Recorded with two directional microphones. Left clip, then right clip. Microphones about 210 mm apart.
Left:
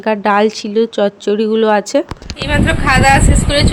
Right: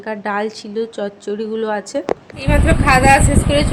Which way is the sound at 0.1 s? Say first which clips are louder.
Left 9 dB; 35° left (ahead or behind).